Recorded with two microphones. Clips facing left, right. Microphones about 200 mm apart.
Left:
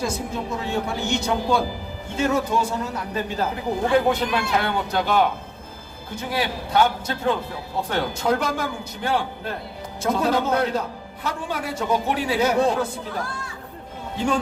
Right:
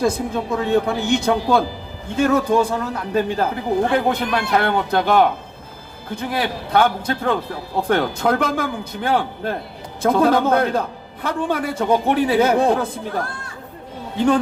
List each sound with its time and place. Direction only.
0.5 s a man's voice: 55° right (ahead or behind)